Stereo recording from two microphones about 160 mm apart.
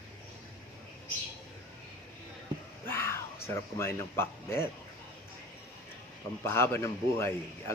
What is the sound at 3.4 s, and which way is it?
A man's voice, 15° left (ahead or behind).